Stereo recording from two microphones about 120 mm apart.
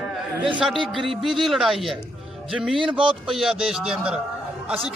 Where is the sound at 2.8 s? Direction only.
45° right (ahead or behind).